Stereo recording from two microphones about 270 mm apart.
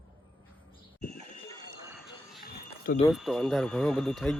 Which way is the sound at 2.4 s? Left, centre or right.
Left.